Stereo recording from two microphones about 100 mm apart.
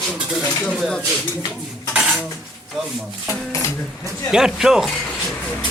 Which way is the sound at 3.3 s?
30° left (ahead or behind).